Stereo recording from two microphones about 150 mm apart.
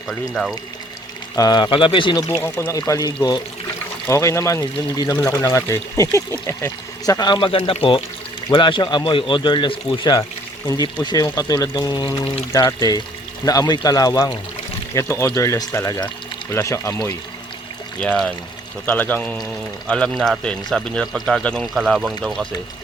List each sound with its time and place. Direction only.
0.1 s speech: 5° left (ahead or behind)
1.4 s speech: 30° left (ahead or behind)
2.4 s speech: 15° left (ahead or behind)
18.0 s speech: 5° left (ahead or behind)